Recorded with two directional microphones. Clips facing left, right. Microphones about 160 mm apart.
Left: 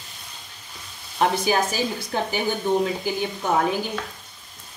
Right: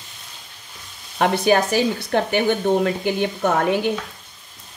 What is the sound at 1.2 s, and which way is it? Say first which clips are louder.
Speech: right 4 dB; 65° right (ahead or behind).